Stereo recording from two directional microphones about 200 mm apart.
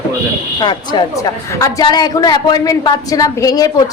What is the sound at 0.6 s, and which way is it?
A woman's voice, 20° left (ahead or behind).